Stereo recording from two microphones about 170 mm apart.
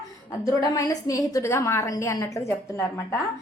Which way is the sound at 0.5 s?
20° left (ahead or behind).